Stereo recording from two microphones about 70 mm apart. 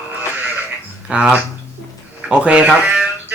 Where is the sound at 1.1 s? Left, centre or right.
Centre.